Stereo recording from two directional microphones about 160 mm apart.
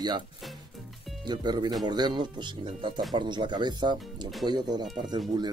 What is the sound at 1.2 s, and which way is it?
Speech, 25° right (ahead or behind).